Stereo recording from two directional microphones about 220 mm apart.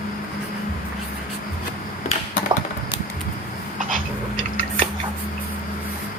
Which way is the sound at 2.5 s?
20° right (ahead or behind).